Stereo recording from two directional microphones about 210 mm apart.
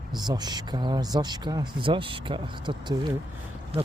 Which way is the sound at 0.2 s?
20° right (ahead or behind).